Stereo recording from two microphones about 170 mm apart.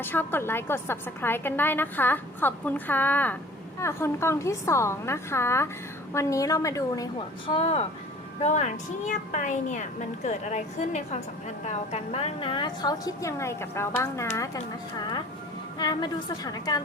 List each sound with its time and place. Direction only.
0.0 s a woman's voice: 10° left (ahead or behind)